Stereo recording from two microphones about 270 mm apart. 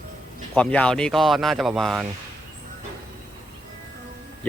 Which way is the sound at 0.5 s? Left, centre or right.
Centre.